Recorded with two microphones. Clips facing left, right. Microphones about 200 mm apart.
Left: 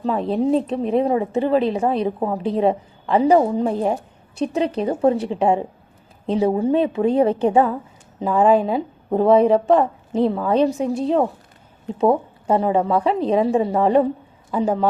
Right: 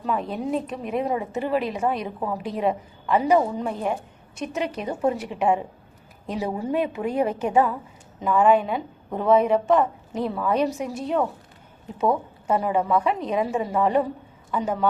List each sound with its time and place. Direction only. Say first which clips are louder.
0.0 s a woman's voice: left 7 dB; 30° left (ahead or behind)